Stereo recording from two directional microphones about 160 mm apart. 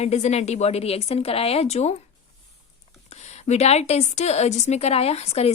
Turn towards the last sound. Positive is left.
turn(degrees=40)  # may be behind; listen again after turning